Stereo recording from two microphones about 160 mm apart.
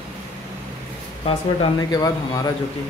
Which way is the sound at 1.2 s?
35° left (ahead or behind).